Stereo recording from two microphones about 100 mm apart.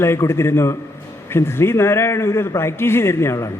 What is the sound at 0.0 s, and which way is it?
A man's voice, 25° left (ahead or behind).